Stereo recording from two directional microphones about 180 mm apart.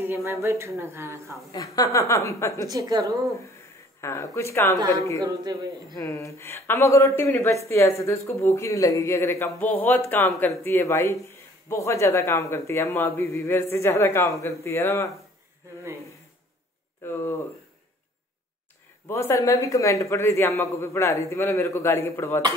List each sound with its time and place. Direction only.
0.0 s speech: 15° right (ahead or behind)
1.5 s speech: 20° left (ahead or behind)
2.7 s speech: 20° right (ahead or behind)
4.0 s speech: 15° left (ahead or behind)
5.2 s speech: 20° right (ahead or behind)
5.9 s speech: 15° left (ahead or behind)
17.0 s speech: 15° left (ahead or behind)
19.0 s speech: 15° left (ahead or behind)